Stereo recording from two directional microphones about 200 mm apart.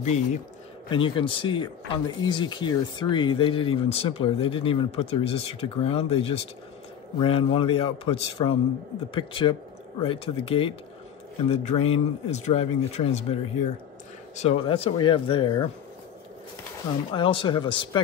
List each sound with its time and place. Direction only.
0.0 s speech: 35° left (ahead or behind)
0.8 s speech: 25° left (ahead or behind)
17.1 s speech: 25° left (ahead or behind)